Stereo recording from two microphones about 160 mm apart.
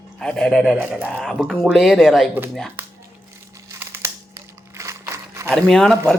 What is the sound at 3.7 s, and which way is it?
Crumpling, 20° right (ahead or behind).